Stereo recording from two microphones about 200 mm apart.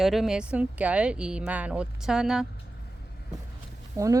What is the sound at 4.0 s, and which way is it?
Speech, 15° right (ahead or behind).